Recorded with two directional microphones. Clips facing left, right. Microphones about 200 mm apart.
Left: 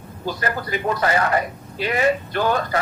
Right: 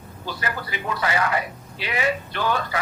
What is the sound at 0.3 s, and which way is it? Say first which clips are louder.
A man's voice: left 5 dB; 45° left (ahead or behind).